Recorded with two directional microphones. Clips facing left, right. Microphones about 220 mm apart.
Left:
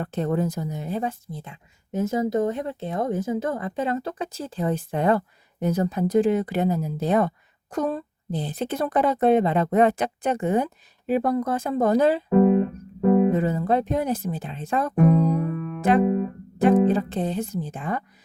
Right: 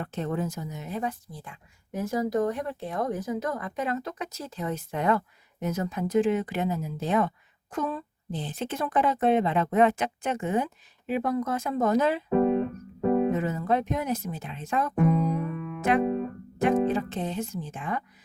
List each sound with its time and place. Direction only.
0.0 s speech: 35° left (ahead or behind)
13.3 s speech: 35° left (ahead or behind)